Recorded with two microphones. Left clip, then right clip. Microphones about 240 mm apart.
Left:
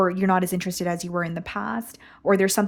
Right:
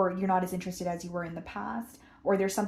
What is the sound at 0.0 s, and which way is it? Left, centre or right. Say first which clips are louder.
Speech: left 6 dB; left.